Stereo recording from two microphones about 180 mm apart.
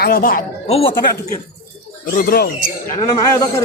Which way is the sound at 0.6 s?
35° left (ahead or behind).